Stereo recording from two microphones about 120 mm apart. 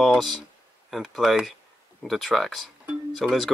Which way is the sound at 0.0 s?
Centre (ahead or behind).